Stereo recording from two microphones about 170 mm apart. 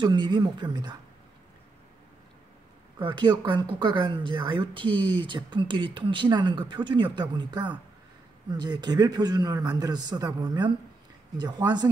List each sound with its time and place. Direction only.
0.0 s speech: 25° right (ahead or behind)
3.0 s speech: 25° right (ahead or behind)